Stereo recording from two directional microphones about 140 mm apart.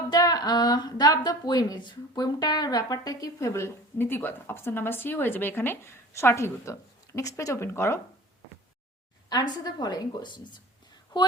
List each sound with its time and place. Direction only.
0.1 s a woman's voice: 30° left (ahead or behind)
9.3 s a woman's voice: 30° left (ahead or behind)